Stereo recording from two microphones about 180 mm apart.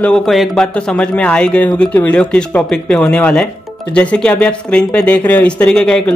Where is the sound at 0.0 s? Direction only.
5° left (ahead or behind).